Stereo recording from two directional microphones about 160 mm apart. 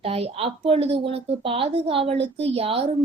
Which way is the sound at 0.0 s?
40° right (ahead or behind).